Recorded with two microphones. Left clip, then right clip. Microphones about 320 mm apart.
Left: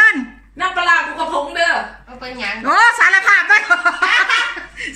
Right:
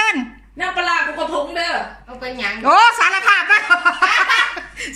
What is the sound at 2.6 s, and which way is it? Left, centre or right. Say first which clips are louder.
A woman's voice: even; centre.